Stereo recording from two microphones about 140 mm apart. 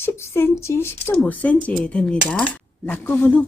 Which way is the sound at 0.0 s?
15° left (ahead or behind).